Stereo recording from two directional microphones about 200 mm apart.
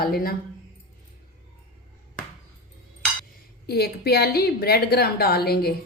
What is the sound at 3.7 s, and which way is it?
A woman's voice, 50° left (ahead or behind).